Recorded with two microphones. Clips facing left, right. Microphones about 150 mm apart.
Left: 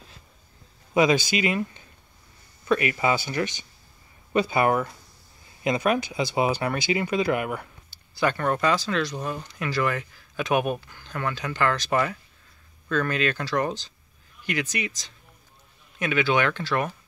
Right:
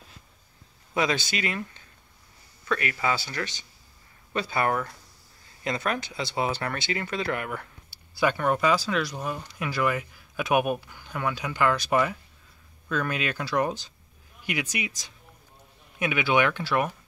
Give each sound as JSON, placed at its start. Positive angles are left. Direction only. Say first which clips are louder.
{"t": 0.9, "sound": "speech", "louder": "left 6 dB", "side_deg": 10}
{"t": 7.9, "sound": "speech", "louder": "even", "side_deg": -10}